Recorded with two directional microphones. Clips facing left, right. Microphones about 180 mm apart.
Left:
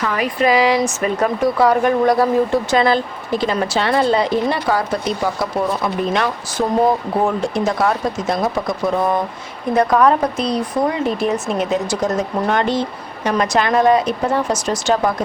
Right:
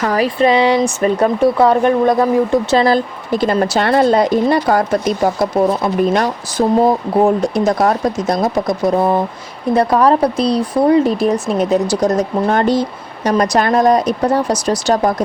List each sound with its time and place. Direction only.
0.0 s speech: 35° right (ahead or behind); by 2.7 s 20° right (ahead or behind)
2.7 s speech: 35° right (ahead or behind)
3.4 s a woman's voice: 50° right (ahead or behind)